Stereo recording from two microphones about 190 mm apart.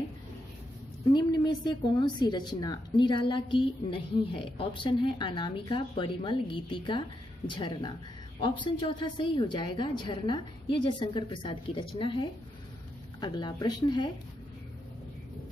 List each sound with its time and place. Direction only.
1.1 s speech: 20° left (ahead or behind)